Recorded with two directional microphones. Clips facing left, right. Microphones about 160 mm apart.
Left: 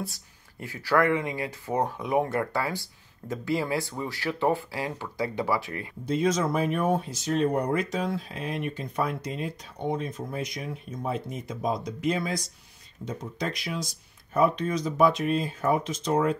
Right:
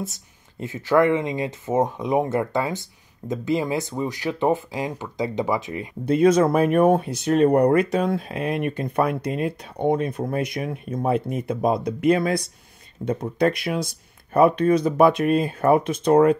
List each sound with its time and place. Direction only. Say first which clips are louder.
0.0 s speech: right 4 dB; 20° right (ahead or behind)
6.0 s speech: right 8 dB; 60° right (ahead or behind)